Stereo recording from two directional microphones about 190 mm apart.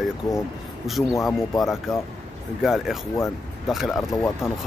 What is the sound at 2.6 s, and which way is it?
Speech, centre (ahead or behind).